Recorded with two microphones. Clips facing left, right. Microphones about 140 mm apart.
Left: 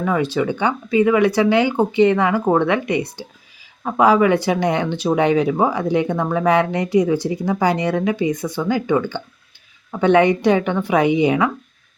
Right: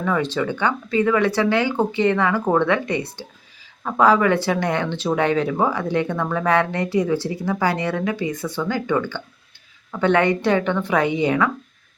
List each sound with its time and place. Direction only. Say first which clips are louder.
0.0 s speech: left 3 dB; 15° left (ahead or behind)